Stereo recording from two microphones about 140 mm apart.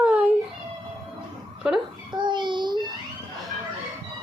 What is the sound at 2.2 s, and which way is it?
Child singing, 35° right (ahead or behind).